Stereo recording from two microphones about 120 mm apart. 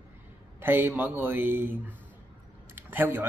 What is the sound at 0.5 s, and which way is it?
A man's voice, 20° right (ahead or behind).